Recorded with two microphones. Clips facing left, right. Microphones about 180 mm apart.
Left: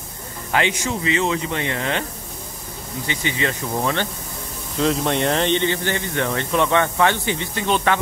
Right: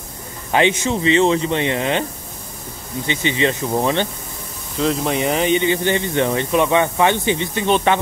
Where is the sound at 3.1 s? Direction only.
20° right (ahead or behind).